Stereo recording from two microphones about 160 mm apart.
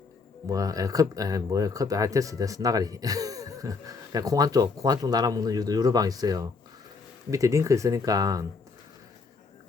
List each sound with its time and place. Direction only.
0.4 s speech: 20° right (ahead or behind)